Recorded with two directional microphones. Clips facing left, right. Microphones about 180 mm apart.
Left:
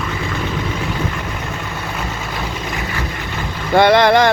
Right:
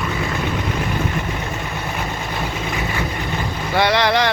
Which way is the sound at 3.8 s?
50° left (ahead or behind).